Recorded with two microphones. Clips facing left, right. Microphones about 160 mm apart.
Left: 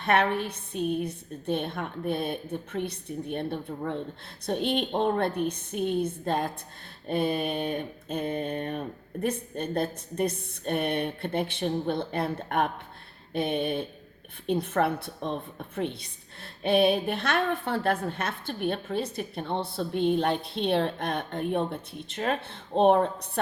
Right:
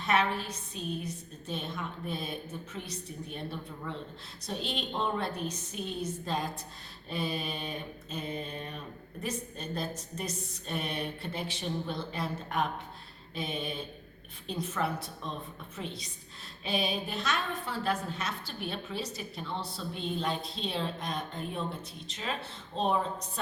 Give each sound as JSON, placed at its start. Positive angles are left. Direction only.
{"t": 0.0, "sound": "a woman's voice", "side_deg": 60}